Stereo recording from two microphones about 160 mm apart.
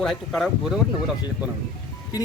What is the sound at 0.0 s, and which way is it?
Speech, centre (ahead or behind).